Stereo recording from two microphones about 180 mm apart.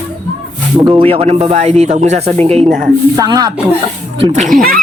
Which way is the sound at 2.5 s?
Centre (ahead or behind).